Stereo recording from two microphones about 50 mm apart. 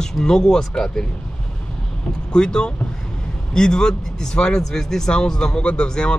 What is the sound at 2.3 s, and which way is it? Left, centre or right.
Speech, centre.